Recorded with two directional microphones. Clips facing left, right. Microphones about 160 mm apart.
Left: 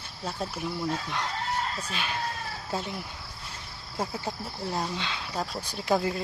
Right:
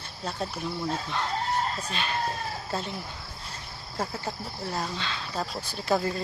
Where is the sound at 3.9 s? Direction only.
10° left (ahead or behind).